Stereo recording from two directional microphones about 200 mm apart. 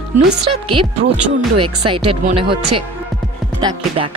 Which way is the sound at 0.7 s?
25° right (ahead or behind).